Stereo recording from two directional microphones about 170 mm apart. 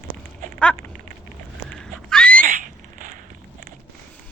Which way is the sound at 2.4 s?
50° right (ahead or behind).